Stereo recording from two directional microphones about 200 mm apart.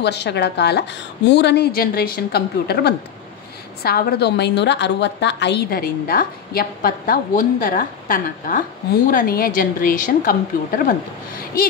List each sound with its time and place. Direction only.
0.0 s a woman's voice: 55° left (ahead or behind); by 10.3 s 40° left (ahead or behind)